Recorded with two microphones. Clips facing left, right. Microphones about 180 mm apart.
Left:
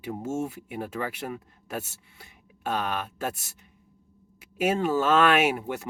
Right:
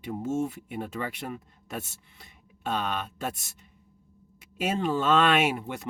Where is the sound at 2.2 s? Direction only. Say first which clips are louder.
Left 3 dB; 10° left (ahead or behind).